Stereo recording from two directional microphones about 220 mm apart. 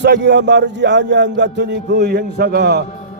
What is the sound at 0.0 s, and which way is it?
Music, 50° right (ahead or behind).